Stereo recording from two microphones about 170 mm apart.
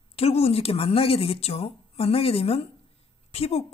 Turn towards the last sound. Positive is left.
turn(degrees=35)  # may be behind; listen again after turning